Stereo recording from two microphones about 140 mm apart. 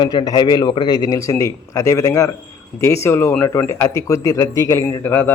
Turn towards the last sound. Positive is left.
turn(degrees=15)  # may be behind; listen again after turning